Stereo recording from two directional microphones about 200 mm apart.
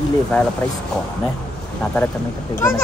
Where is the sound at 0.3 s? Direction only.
5° left (ahead or behind).